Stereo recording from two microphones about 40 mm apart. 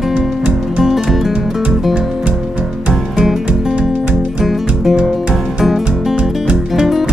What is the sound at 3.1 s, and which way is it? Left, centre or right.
Music, centre.